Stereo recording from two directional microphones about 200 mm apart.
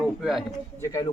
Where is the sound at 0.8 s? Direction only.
15° left (ahead or behind).